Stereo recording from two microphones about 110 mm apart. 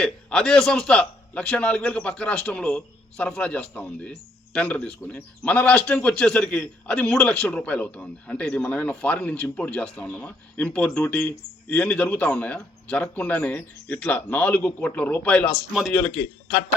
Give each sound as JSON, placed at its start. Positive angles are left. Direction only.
{"t": 0.0, "sound": "a man's voice", "side_deg": 5}